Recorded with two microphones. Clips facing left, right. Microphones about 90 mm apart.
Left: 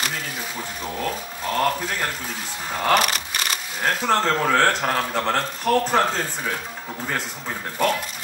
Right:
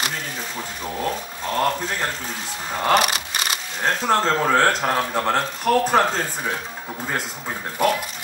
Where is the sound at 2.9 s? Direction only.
10° right (ahead or behind).